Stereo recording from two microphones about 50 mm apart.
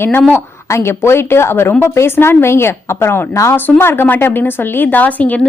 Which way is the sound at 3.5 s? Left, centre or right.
Left.